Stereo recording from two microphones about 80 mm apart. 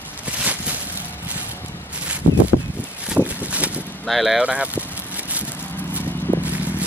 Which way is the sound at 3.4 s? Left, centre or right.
Centre.